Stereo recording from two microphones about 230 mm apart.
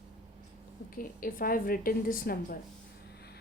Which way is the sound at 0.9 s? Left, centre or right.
Left.